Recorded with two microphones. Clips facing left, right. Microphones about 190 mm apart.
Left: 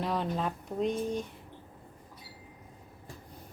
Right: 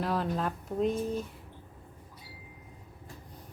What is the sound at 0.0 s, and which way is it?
Speech, centre (ahead or behind).